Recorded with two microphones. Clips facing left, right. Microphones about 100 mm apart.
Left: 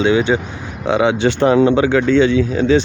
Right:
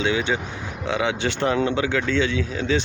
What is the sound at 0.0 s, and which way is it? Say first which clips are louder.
Speech: left 8 dB; 30° left (ahead or behind).